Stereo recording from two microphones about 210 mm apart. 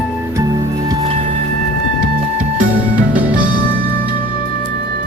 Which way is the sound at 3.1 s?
5° right (ahead or behind).